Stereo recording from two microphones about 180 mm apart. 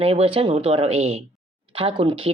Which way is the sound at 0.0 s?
35° right (ahead or behind).